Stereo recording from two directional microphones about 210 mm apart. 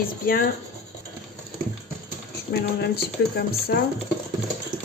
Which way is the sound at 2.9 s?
45° left (ahead or behind).